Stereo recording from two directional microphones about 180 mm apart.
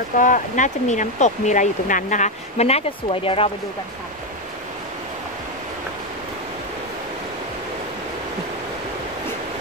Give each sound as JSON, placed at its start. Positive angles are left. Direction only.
{"t": 0.2, "sound": "speech", "side_deg": 45}